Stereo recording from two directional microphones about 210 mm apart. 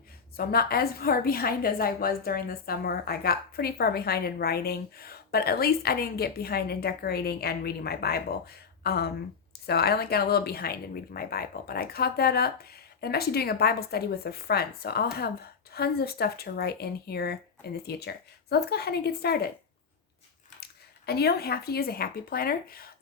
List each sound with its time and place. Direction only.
0.3 s speech: 45° left (ahead or behind)
21.1 s speech: 50° left (ahead or behind)